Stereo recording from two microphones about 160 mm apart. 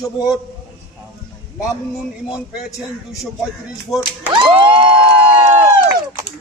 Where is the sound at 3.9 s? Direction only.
Centre (ahead or behind).